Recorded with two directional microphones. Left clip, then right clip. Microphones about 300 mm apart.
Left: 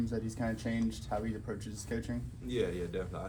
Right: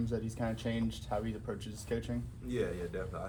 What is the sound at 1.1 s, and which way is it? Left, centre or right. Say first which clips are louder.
Speech: even; right.